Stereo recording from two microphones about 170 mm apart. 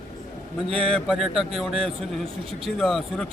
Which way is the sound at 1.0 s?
Centre (ahead or behind).